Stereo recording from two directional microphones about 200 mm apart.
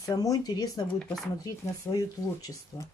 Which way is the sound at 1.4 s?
20° left (ahead or behind).